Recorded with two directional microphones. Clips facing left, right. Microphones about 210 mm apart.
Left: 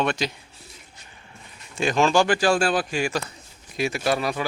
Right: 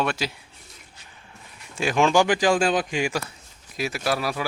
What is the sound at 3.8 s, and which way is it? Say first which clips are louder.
Speech: left 2 dB; centre (ahead or behind).